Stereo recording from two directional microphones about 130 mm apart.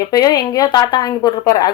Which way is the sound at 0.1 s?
30° left (ahead or behind).